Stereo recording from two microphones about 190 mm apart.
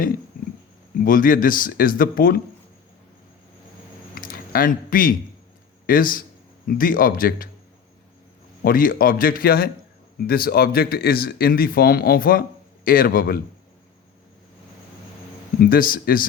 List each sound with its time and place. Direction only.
1.0 s speech: 45° left (ahead or behind)
4.1 s a sound: 50° left (ahead or behind)
5.8 s a man's voice: 50° left (ahead or behind)
8.6 s speech: 45° left (ahead or behind)
15.6 s speech: 50° left (ahead or behind)